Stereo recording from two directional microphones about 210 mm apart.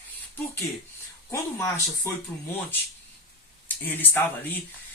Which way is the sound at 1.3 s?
10° left (ahead or behind).